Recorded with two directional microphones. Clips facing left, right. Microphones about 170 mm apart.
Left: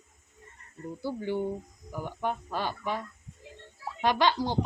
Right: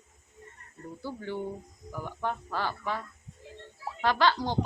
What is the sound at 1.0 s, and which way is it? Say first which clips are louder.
A woman's voice: left 4 dB; 15° left (ahead or behind).